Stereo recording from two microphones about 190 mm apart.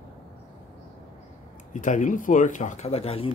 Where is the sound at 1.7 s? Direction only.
40° left (ahead or behind).